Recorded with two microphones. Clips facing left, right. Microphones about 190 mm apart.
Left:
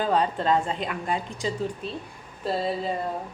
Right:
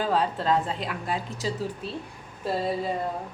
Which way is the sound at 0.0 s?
Centre (ahead or behind).